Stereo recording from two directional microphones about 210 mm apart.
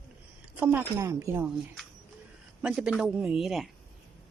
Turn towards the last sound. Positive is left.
turn(degrees=0)  # may be behind; listen again after turning